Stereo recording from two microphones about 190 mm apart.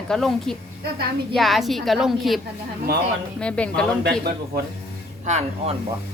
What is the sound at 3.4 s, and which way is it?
Speech, 5° left (ahead or behind).